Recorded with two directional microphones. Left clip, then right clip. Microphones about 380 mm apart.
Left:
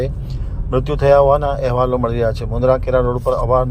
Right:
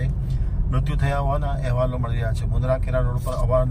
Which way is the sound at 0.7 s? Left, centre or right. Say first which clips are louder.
Left 15 dB; left.